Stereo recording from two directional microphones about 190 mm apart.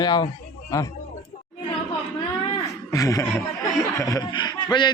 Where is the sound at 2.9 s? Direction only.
20° left (ahead or behind).